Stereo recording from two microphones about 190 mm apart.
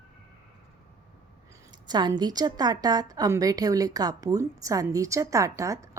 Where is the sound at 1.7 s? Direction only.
20° right (ahead or behind).